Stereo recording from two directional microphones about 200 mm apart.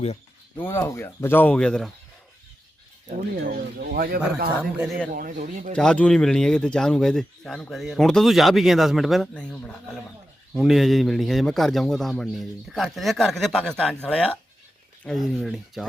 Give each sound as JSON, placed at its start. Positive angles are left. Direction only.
{"t": 0.5, "sound": "speech", "side_deg": 10}
{"t": 3.1, "sound": "speech", "side_deg": -45}
{"t": 4.8, "sound": "speech", "side_deg": 0}
{"t": 5.1, "sound": "speech", "side_deg": -40}
{"t": 5.7, "sound": "speech", "side_deg": 5}